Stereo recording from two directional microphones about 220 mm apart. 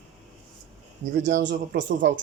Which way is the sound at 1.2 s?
50° right (ahead or behind).